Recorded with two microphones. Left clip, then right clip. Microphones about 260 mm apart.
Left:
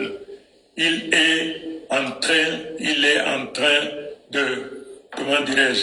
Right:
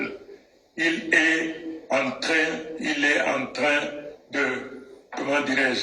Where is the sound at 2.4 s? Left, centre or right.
Left.